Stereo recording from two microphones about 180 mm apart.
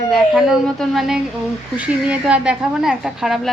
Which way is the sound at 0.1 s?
5° right (ahead or behind).